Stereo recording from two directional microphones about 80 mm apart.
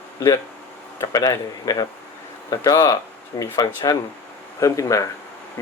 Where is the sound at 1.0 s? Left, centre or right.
Left.